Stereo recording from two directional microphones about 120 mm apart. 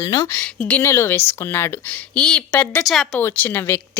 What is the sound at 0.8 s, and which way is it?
Speech, 20° left (ahead or behind).